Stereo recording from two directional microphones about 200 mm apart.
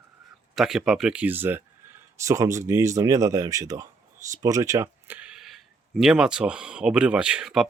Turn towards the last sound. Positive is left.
turn(degrees=-5)  # may be behind; listen again after turning